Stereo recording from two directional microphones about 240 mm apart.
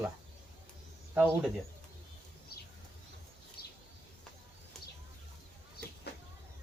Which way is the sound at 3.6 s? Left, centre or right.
Left.